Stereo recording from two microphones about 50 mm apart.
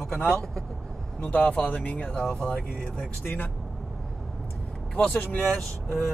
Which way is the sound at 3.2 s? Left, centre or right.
Left.